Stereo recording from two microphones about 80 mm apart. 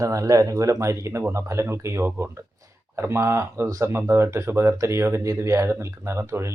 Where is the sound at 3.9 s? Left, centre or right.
Right.